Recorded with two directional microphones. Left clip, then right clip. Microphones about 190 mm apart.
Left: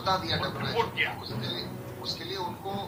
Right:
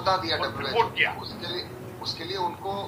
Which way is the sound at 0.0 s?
45° right (ahead or behind).